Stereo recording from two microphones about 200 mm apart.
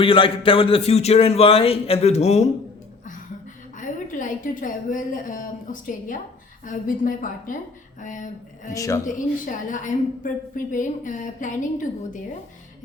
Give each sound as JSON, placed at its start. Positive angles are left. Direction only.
{"t": 0.0, "sound": "a sound", "side_deg": 25}
{"t": 3.8, "sound": "a woman's voice", "side_deg": 40}
{"t": 8.7, "sound": "speech", "side_deg": 15}
{"t": 9.1, "sound": "a woman's voice", "side_deg": 40}